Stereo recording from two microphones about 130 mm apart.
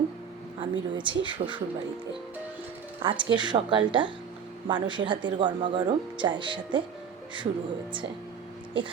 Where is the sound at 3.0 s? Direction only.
40° right (ahead or behind).